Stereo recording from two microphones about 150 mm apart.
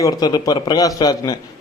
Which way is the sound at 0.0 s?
25° left (ahead or behind).